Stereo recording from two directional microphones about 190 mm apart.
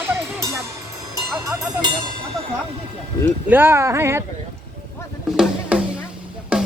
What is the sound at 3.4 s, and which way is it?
Speech, 10° right (ahead or behind).